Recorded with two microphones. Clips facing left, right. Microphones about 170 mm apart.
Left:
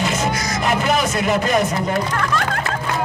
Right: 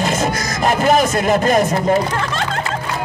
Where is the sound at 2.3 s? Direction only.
25° right (ahead or behind).